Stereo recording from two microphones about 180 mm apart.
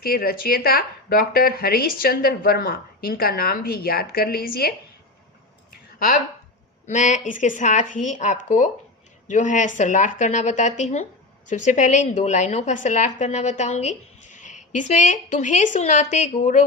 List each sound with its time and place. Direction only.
0.0 s a woman's voice: 55° left (ahead or behind)
6.8 s a woman's voice: 40° left (ahead or behind)